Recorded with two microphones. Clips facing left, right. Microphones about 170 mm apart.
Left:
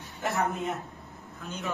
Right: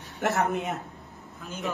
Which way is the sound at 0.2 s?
70° right (ahead or behind).